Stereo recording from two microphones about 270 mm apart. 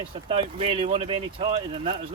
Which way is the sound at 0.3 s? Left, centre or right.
Right.